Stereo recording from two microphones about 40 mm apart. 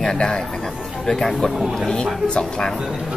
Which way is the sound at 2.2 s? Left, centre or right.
Left.